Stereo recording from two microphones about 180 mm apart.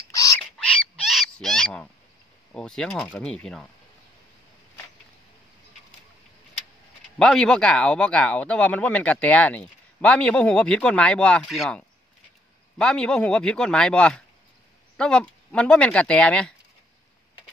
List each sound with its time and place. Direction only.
0.1 s owl: 20° left (ahead or behind)
0.6 s owl: 5° left (ahead or behind)
2.5 s speech: 5° left (ahead or behind)
7.2 s speech: 5° left (ahead or behind)